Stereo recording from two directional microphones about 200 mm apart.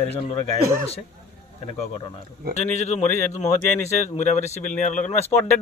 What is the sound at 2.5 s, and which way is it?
Speech, 35° left (ahead or behind).